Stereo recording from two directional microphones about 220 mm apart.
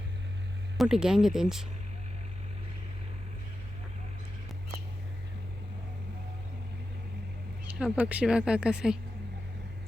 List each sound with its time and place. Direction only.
0.8 s speech: centre (ahead or behind)
7.7 s speech: 5° right (ahead or behind)